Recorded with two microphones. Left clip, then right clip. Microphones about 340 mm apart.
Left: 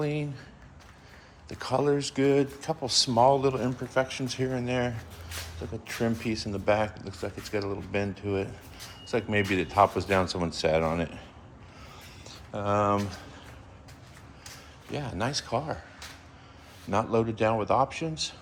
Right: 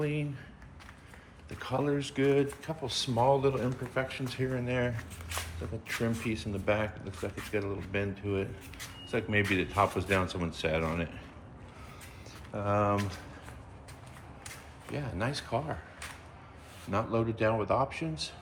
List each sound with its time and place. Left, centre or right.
0.0 s speech: centre
1.5 s speech: centre
12.3 s speech: centre
14.9 s speech: centre